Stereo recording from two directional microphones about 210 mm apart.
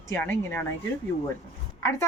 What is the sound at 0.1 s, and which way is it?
Speech, 10° left (ahead or behind).